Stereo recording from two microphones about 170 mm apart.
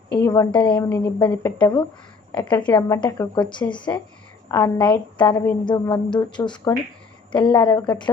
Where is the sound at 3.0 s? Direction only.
20° left (ahead or behind).